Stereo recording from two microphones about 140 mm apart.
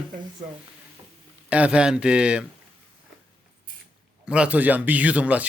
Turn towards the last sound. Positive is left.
turn(degrees=-10)  # may be behind; listen again after turning